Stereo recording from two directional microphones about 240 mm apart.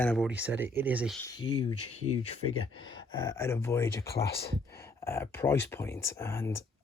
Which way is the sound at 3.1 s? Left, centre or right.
Centre.